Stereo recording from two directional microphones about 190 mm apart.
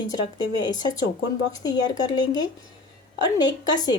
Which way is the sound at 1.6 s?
20° left (ahead or behind).